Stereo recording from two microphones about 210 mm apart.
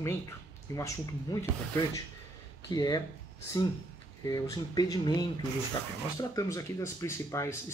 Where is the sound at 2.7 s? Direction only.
20° left (ahead or behind).